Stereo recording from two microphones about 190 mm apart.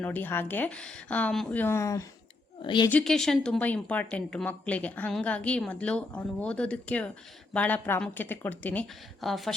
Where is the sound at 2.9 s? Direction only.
5° left (ahead or behind).